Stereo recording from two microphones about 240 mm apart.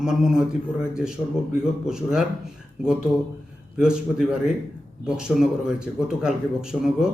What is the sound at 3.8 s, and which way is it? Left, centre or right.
Speech, centre.